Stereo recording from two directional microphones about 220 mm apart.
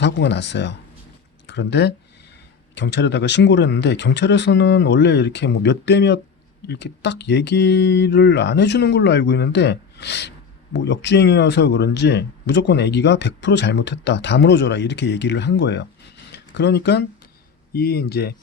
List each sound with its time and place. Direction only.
0.0 s speech: 50° left (ahead or behind)